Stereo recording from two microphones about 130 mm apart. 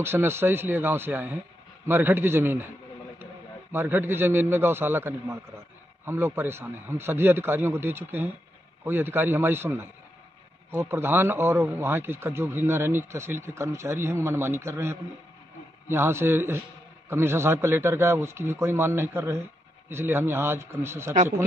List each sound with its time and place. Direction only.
0.0 s a man's voice: 20° right (ahead or behind)
3.7 s a man's voice: 15° right (ahead or behind)